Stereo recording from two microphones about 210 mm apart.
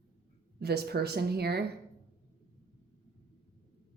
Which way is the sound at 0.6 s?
50° right (ahead or behind).